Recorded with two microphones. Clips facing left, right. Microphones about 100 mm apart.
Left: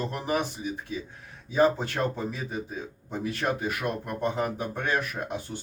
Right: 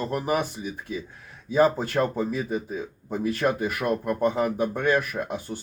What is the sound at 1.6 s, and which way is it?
Speech, 45° right (ahead or behind).